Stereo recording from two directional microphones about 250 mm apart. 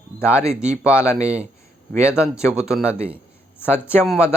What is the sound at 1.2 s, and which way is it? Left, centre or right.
Speech, right.